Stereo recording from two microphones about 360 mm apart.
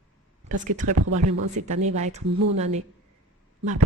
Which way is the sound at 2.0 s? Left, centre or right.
Centre.